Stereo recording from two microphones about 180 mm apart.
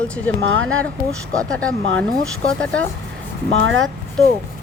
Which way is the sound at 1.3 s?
5° left (ahead or behind).